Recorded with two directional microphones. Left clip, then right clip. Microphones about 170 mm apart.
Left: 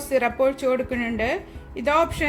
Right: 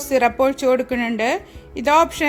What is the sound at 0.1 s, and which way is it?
Speech, 45° right (ahead or behind).